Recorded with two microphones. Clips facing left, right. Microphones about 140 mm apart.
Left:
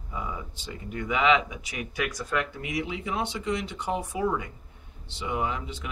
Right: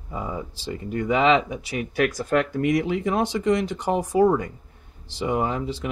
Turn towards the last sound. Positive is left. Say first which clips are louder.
# right 6 dB
turn(degrees=-35)  # may be behind; listen again after turning